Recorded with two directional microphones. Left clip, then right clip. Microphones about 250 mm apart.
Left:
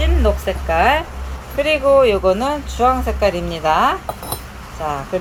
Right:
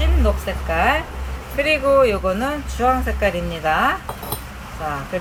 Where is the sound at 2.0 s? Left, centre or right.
Centre.